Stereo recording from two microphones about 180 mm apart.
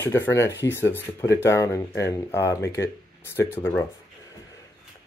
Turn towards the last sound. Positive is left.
turn(degrees=15)  # may be behind; listen again after turning